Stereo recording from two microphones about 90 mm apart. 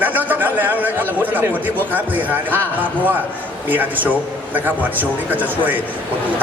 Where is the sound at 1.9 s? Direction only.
20° right (ahead or behind).